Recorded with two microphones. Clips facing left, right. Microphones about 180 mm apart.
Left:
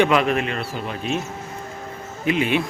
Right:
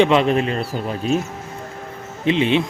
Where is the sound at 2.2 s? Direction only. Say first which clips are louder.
Right 3 dB; 25° right (ahead or behind).